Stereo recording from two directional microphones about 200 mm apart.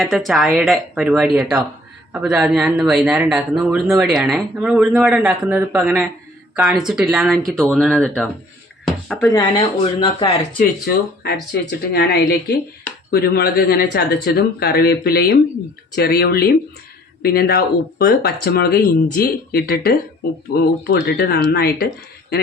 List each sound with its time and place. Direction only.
0.0 s speech: centre (ahead or behind)
9.3 s speech: 25° left (ahead or behind)
10.6 s speech: 50° left (ahead or behind)